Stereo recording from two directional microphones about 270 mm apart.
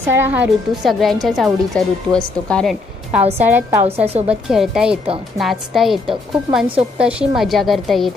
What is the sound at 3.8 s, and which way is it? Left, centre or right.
Speech, right.